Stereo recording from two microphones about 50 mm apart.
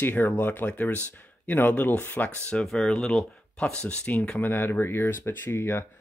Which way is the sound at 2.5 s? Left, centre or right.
Centre.